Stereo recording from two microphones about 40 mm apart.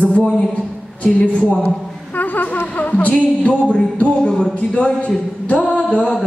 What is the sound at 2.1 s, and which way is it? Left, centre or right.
Music, left.